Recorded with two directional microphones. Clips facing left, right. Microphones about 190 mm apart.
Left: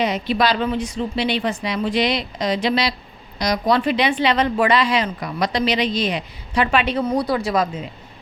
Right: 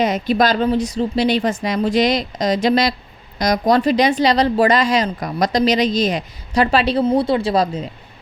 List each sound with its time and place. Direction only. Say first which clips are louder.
0.0 s speech: right 3 dB; 45° right (ahead or behind)